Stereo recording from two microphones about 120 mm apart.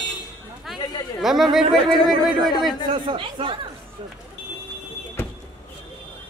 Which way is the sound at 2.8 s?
45° right (ahead or behind).